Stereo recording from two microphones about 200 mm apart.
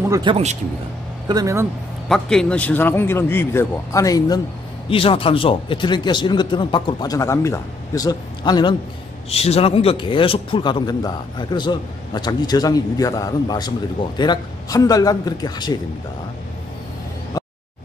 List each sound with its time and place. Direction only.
0.1 s speech: 25° right (ahead or behind)
1.3 s speech: 15° right (ahead or behind)
2.0 s a man's voice: centre (ahead or behind); by 15.8 s 20° left (ahead or behind)